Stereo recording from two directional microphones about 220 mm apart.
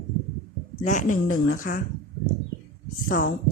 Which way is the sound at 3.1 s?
40° left (ahead or behind).